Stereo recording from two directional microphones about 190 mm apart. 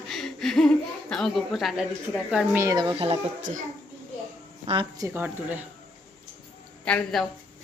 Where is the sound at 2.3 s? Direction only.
10° right (ahead or behind).